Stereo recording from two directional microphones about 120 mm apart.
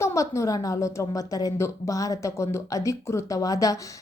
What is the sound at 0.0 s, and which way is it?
Speech, 25° left (ahead or behind).